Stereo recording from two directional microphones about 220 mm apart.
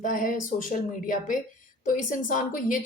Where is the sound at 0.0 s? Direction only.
35° left (ahead or behind).